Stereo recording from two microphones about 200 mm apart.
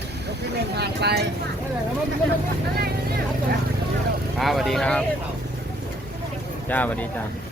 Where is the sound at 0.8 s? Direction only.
55° right (ahead or behind).